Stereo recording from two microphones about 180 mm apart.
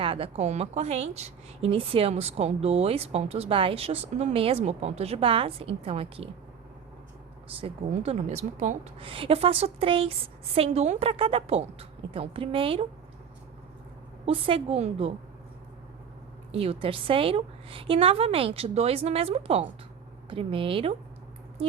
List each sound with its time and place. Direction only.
0.0 s a woman's voice: 30° right (ahead or behind)
7.4 s a woman's voice: 30° right (ahead or behind)
14.3 s a woman's voice: 30° right (ahead or behind)
16.5 s a woman's voice: 35° right (ahead or behind)